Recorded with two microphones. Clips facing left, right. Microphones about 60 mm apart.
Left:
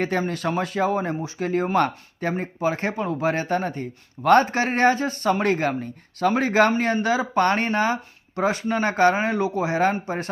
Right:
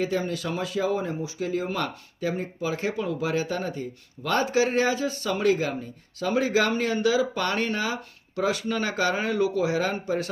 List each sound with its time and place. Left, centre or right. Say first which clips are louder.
0.0 s speech: left 3 dB; left